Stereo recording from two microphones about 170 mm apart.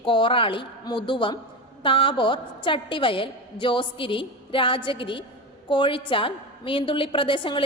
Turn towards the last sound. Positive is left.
turn(degrees=30)  # may be behind; listen again after turning